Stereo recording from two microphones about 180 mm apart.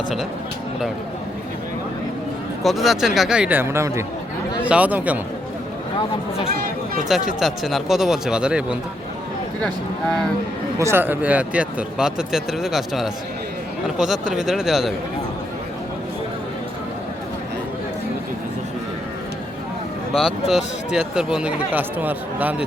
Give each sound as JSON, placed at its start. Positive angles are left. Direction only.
{"t": 2.6, "sound": "speech", "side_deg": 0}
{"t": 6.5, "sound": "a sound", "side_deg": -55}
{"t": 7.3, "sound": "speech", "side_deg": 0}
{"t": 10.8, "sound": "speech", "side_deg": -15}
{"t": 20.1, "sound": "speech", "side_deg": 0}